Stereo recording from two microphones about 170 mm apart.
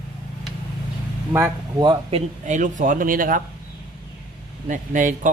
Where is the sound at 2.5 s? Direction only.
50° right (ahead or behind).